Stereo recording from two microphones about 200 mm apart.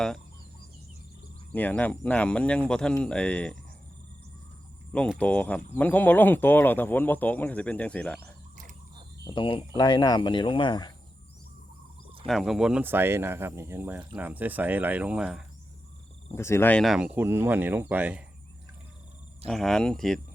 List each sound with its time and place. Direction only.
1.5 s speech: 10° left (ahead or behind)
4.9 s speech: 5° left (ahead or behind)
8.2 s mechanisms: 40° right (ahead or behind)
9.2 s speech: 25° left (ahead or behind)
12.2 s speech: centre (ahead or behind)
16.3 s speech: 15° left (ahead or behind); by 18.2 s 10° right (ahead or behind)
19.5 s speech: centre (ahead or behind)